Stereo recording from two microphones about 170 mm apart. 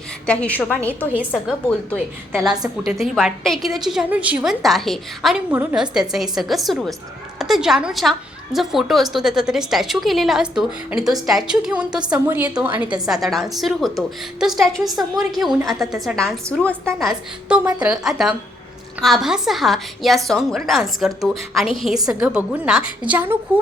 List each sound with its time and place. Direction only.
0.3 s a woman's voice: 5° left (ahead or behind); by 12.9 s 10° right (ahead or behind)
13.2 s a woman's voice: centre (ahead or behind)
17.6 s a woman's voice: 25° right (ahead or behind)
17.8 s a woman's voice: 5° right (ahead or behind)